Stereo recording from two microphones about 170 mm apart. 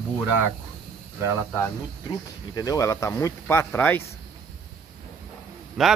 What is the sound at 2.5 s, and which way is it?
Speech, 20° left (ahead or behind).